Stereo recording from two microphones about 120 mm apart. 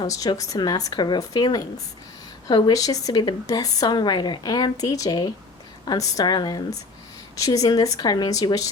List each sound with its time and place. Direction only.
0.0 s a woman's voice: 30° left (ahead or behind)